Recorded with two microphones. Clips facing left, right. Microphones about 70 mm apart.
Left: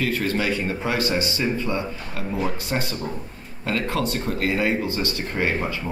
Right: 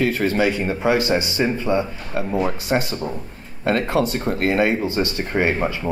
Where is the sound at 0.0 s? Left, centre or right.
Right.